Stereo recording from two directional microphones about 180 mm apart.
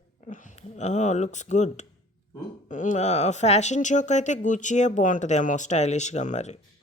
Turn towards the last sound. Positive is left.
turn(degrees=40)  # may be behind; listen again after turning